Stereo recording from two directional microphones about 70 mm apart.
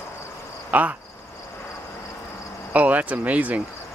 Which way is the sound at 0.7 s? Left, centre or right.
Right.